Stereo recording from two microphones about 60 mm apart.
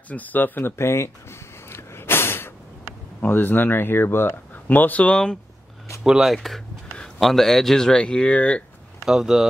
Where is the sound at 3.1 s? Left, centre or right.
Left; by 5.4 s centre.